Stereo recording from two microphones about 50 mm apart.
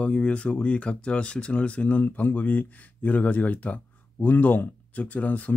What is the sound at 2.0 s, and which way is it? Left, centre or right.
Speech, left.